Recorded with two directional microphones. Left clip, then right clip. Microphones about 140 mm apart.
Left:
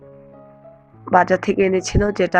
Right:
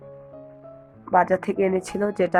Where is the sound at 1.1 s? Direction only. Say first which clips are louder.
Left 4 dB; 20° left (ahead or behind).